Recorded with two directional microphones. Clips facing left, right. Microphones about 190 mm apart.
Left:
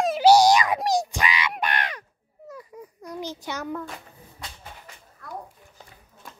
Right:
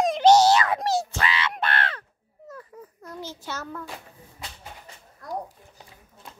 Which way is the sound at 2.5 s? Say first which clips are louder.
Left 1 dB; 15° left (ahead or behind).